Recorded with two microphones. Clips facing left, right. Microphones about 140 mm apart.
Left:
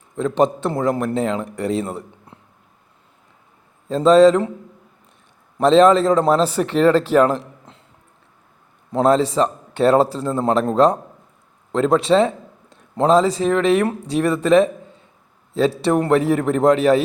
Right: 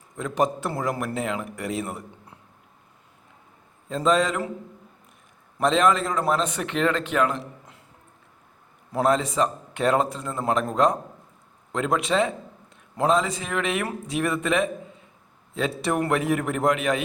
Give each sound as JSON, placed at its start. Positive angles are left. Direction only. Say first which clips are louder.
{"t": 0.2, "sound": "a man's voice", "louder": "left 7 dB", "side_deg": 30}
{"t": 3.8, "sound": "speech", "louder": "left 11 dB", "side_deg": 35}
{"t": 5.5, "sound": "speech", "louder": "left 8 dB", "side_deg": 30}
{"t": 8.9, "sound": "a man's voice", "louder": "left 6 dB", "side_deg": 25}